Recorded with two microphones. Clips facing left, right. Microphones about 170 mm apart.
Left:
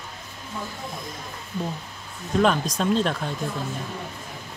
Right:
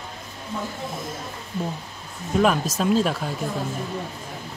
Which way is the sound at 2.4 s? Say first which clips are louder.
Right 1 dB; 5° right (ahead or behind).